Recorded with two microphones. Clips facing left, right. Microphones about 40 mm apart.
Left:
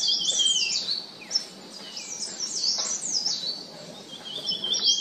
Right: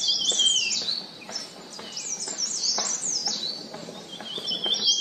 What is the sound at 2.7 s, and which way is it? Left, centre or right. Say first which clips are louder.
Bird: right 2 dB; right.